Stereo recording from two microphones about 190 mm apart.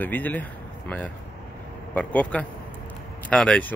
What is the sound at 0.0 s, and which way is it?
Speech, 10° left (ahead or behind).